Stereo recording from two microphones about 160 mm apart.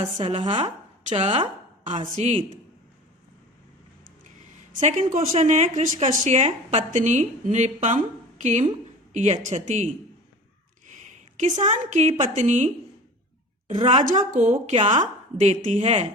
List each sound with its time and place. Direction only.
0.0 s speech: 30° right (ahead or behind)
0.6 s a woman's voice: 40° right (ahead or behind)
4.7 s a woman's voice: 50° right (ahead or behind)
11.1 s a woman's voice: 50° right (ahead or behind)
13.7 s a woman's voice: 40° right (ahead or behind)